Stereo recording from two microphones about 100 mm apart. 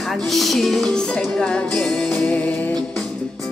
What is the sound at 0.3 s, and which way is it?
Music, centre (ahead or behind).